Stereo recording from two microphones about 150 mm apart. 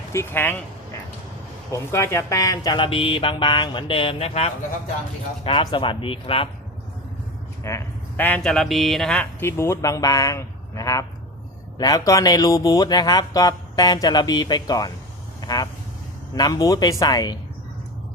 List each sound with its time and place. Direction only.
0.1 s speech: 15° left (ahead or behind)
1.7 s speech: 20° left (ahead or behind)
2.7 s speech: 35° left (ahead or behind)
7.6 s speech: 20° left (ahead or behind)
9.5 s speech: 20° left (ahead or behind)